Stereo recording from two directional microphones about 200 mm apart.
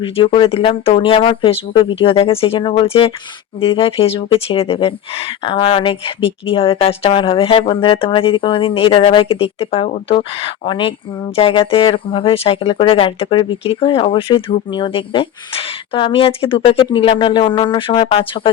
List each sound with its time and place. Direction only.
0.0 s speech: 25° left (ahead or behind)